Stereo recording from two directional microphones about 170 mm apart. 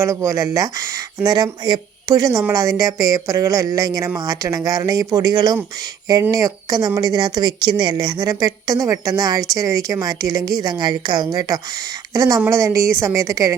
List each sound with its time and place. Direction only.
0.0 s a woman's voice: 15° right (ahead or behind)